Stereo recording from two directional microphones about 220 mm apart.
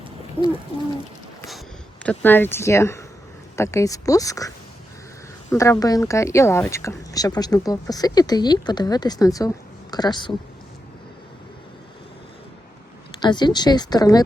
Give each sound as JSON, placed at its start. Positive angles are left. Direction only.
{"t": 0.4, "sound": "a woman's voice", "side_deg": 5}
{"t": 2.0, "sound": "a woman's voice", "side_deg": 10}
{"t": 13.1, "sound": "speech", "side_deg": 20}